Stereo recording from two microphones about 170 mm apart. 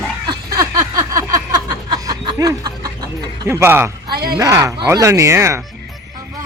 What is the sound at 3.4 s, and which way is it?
Speech, 15° right (ahead or behind).